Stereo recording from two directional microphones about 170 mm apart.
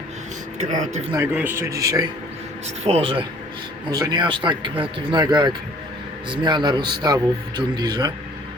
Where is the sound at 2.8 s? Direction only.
35° right (ahead or behind).